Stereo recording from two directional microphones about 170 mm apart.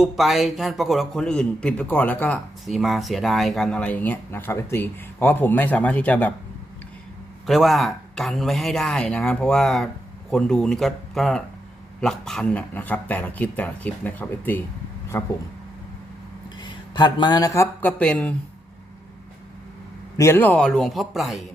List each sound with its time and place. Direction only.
0.0 s a man's voice: centre (ahead or behind)
7.4 s a man's voice: centre (ahead or behind); by 15.3 s 15° left (ahead or behind)
16.6 s speech: 25° left (ahead or behind)
18.0 s a man's voice: 5° left (ahead or behind)
20.1 s speech: 15° left (ahead or behind)